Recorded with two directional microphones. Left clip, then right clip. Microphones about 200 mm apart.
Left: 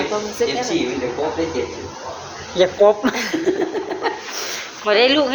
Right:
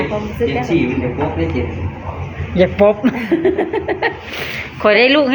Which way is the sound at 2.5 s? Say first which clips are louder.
Right 2 dB; 20° left (ahead or behind).